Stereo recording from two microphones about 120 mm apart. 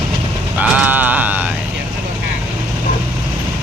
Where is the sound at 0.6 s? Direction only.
10° right (ahead or behind).